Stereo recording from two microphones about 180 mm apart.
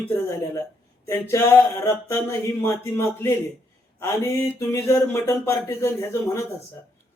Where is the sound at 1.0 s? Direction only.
15° left (ahead or behind).